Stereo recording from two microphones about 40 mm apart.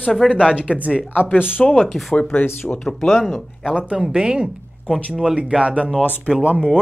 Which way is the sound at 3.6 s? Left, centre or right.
Right.